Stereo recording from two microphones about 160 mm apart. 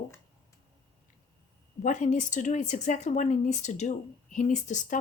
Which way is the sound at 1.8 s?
50° left (ahead or behind).